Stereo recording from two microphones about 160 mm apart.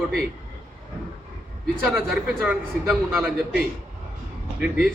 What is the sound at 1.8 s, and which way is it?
A man's voice, 5° right (ahead or behind).